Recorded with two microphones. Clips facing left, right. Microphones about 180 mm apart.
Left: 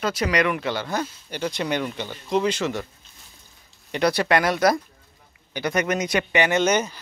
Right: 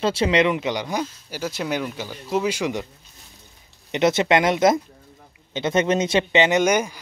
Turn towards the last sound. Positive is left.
turn(degrees=-10)  # may be behind; listen again after turning